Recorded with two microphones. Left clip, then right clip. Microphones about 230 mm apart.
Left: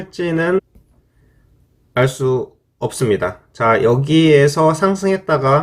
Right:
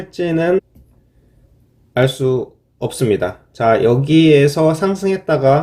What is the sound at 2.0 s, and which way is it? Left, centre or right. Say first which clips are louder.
Speech: right 2 dB; centre.